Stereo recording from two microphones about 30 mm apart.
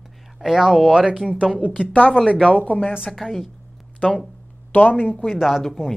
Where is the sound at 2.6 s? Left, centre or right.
Left.